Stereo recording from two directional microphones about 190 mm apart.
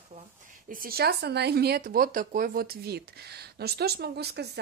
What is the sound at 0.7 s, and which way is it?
Speech, 50° right (ahead or behind).